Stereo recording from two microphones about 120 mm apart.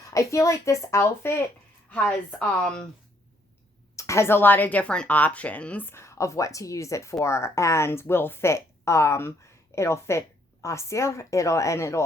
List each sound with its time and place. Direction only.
0.0 s speech: 25° left (ahead or behind)
1.9 s speech: 10° left (ahead or behind)
3.9 s speech: 25° left (ahead or behind)